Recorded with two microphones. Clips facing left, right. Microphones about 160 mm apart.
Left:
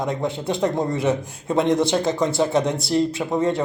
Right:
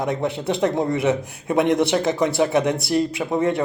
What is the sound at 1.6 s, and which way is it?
Speech, 20° right (ahead or behind).